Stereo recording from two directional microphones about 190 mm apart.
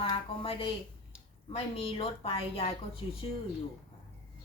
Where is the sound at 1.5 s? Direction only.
30° left (ahead or behind).